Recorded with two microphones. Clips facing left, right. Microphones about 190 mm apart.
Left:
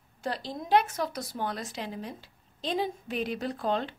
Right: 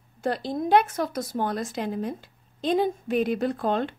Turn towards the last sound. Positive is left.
turn(degrees=-50)  # may be behind; listen again after turning